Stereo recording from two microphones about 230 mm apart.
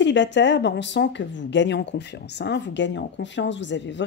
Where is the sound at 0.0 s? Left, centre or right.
Left.